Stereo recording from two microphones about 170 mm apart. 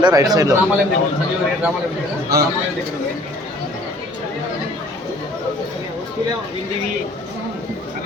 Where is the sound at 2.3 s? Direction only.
65° right (ahead or behind).